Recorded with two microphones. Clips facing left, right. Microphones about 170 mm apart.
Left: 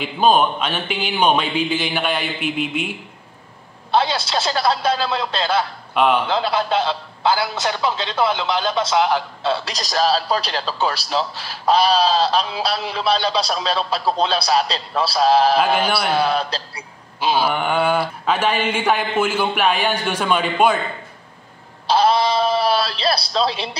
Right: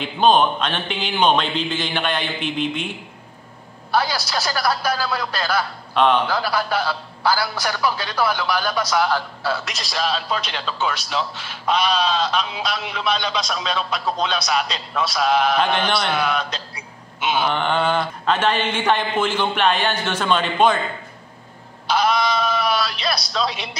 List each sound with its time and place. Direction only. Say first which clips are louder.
0.0 s speech: even; 5° left (ahead or behind)
3.9 s a man's voice: left 3 dB; 25° left (ahead or behind)
5.9 s speech: even; 10° left (ahead or behind)
6.2 s a man's voice: left 2 dB; 25° left (ahead or behind)
9.8 s a man's voice: left 5 dB; 40° left (ahead or behind)
15.6 s speech: left 2 dB; 5° left (ahead or behind)
16.1 s a man's voice: left 3 dB; 35° left (ahead or behind)
17.5 s speech: left 1 dB; 10° left (ahead or behind)
21.8 s a man's voice: left 3 dB; 30° left (ahead or behind)